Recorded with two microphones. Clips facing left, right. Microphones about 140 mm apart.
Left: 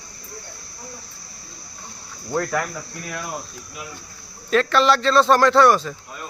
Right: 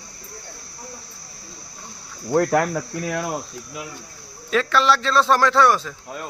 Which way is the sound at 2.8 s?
85° right.